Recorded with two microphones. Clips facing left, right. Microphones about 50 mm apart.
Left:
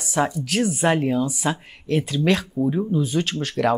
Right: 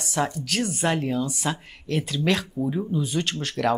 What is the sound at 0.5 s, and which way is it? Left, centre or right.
Speech, centre.